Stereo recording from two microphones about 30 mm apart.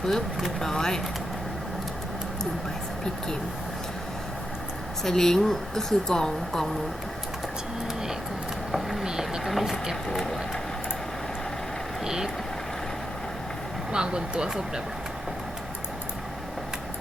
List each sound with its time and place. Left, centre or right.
0.6 s speech: centre
5.0 s speech: centre
8.7 s speech: centre
9.0 s speech: right
9.4 s speech: centre
12.0 s speech: centre
13.9 s speech: right